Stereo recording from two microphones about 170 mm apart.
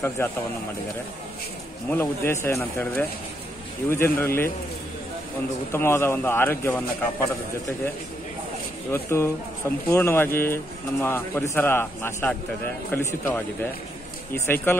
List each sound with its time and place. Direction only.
0.2 s a man's voice: 15° left (ahead or behind)
1.9 s a man's voice: 15° left (ahead or behind)
5.7 s a man's voice: 15° left (ahead or behind)
8.9 s a man's voice: 15° left (ahead or behind)